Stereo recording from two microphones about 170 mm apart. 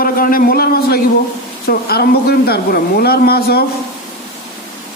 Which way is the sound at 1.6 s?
70° left (ahead or behind).